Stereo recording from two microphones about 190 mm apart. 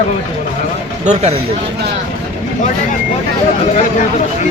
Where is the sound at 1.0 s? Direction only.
35° right (ahead or behind).